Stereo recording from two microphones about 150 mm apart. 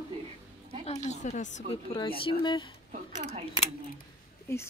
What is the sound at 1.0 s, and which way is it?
Speech, 50° left (ahead or behind).